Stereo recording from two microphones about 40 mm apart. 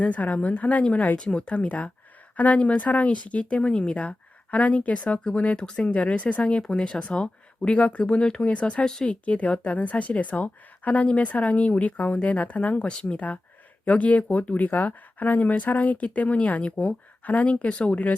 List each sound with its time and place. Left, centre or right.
0.0 s a woman's voice: left
8.8 s speech: centre
9.2 s a woman's voice: left